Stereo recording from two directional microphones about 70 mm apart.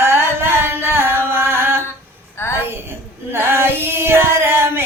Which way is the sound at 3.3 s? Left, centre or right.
Right.